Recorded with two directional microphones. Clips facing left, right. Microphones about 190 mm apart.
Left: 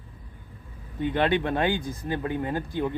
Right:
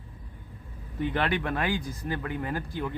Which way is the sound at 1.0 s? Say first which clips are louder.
Left 4 dB; 20° left (ahead or behind).